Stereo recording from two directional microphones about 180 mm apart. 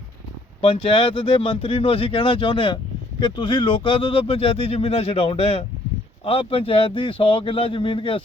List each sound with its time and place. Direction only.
0.6 s speech: 30° left (ahead or behind)